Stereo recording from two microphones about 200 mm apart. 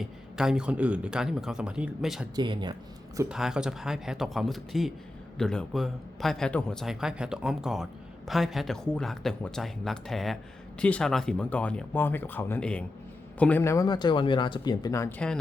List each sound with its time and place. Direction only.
0.0 s a man's voice: centre (ahead or behind)
2.3 s speech: 20° right (ahead or behind)
3.2 s a man's voice: centre (ahead or behind); by 15.1 s 15° left (ahead or behind)